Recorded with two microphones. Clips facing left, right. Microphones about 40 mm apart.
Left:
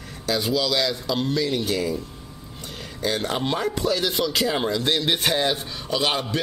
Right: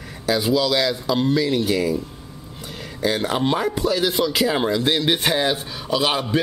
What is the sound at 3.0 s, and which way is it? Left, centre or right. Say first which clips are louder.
Speech: right 4 dB; centre.